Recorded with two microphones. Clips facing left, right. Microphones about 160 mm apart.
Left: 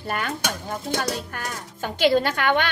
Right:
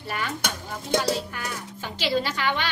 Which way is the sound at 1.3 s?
45° left (ahead or behind).